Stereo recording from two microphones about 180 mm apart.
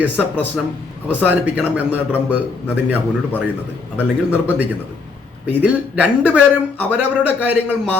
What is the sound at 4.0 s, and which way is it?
Speech, 10° right (ahead or behind).